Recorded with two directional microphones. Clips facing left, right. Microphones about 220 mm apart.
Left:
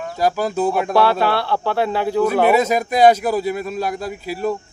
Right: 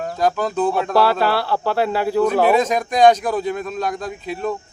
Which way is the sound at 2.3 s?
5° left (ahead or behind).